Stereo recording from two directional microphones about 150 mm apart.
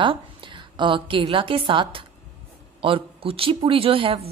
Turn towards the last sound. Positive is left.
turn(degrees=-35)  # may be behind; listen again after turning